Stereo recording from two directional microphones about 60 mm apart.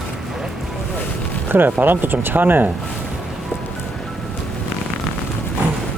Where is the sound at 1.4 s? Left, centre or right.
Right.